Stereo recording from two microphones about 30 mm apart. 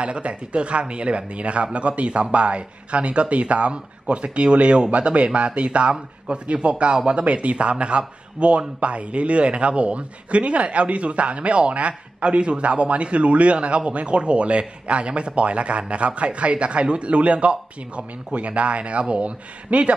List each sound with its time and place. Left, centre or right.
0.0 s a man's voice: right